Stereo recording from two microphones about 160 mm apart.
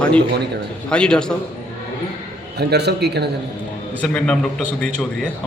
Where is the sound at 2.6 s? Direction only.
90° right.